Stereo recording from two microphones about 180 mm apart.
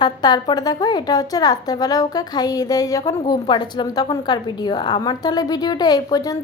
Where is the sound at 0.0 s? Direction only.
25° left (ahead or behind).